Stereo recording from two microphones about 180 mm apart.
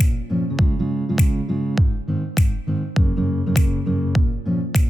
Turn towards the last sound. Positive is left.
turn(degrees=0)  # may be behind; listen again after turning